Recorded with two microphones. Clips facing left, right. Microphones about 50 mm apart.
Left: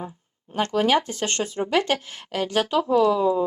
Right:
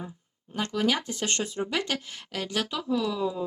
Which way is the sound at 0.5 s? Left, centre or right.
Left.